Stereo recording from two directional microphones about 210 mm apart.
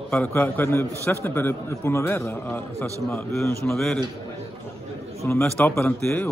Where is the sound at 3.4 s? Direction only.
Centre (ahead or behind).